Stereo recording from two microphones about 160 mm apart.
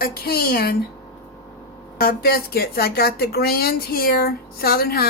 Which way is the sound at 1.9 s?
70° left (ahead or behind).